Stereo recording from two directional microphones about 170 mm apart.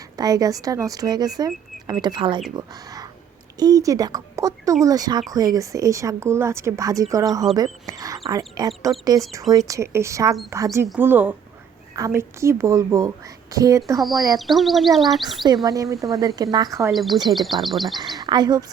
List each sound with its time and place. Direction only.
0.2 s speech: 20° right (ahead or behind)
14.0 s speech: centre (ahead or behind)
15.6 s speech: 20° right (ahead or behind)
16.9 s speech: centre (ahead or behind)
18.0 s speech: 25° right (ahead or behind)